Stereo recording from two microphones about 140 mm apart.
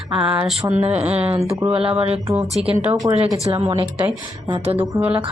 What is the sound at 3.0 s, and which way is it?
Speech, 30° right (ahead or behind).